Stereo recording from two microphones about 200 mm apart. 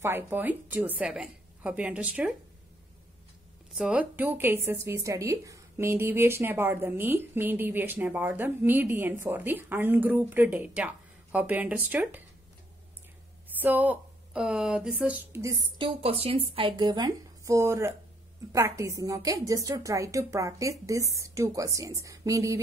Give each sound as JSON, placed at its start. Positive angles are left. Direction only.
{"t": 0.0, "sound": "speech", "side_deg": -10}
{"t": 3.7, "sound": "speech", "side_deg": -5}
{"t": 13.6, "sound": "speech", "side_deg": -10}
{"t": 16.0, "sound": "speech", "side_deg": -30}